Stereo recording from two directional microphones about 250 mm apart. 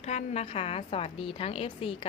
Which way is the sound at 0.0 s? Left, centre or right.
Left.